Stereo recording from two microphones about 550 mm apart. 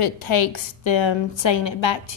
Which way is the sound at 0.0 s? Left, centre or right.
Left.